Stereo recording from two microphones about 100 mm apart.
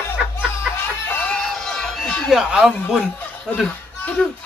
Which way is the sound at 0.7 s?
20° left (ahead or behind).